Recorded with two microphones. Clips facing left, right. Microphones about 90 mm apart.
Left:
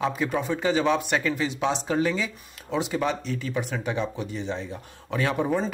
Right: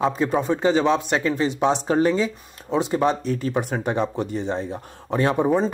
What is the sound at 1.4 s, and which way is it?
Speech, 40° right (ahead or behind).